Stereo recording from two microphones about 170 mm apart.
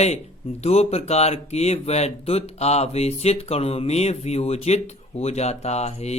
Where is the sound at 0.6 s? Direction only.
40° left (ahead or behind).